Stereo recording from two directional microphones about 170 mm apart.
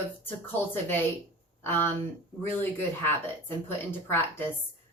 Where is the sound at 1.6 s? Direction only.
10° left (ahead or behind).